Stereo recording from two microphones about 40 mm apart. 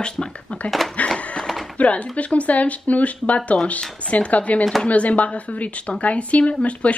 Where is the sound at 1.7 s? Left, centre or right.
Left.